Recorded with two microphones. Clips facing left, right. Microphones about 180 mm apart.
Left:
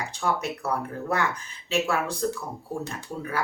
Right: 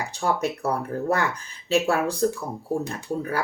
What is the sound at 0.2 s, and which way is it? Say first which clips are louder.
Speech: right 3 dB; 40° right (ahead or behind).